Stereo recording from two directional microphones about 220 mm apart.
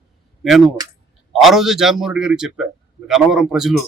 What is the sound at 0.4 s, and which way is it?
Speech, centre (ahead or behind).